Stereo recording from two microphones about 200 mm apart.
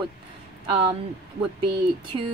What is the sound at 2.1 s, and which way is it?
Speech, 25° right (ahead or behind).